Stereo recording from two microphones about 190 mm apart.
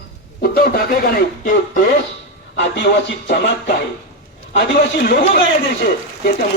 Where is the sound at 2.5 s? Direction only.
65° left (ahead or behind).